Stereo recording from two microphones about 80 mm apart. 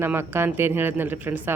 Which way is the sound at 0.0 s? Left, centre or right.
Right.